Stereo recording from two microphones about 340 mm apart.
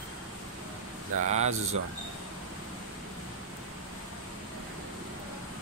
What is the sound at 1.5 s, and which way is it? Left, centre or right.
Speech, right.